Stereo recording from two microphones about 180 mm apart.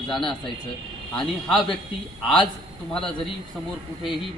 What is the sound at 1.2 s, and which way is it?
Speech, centre (ahead or behind).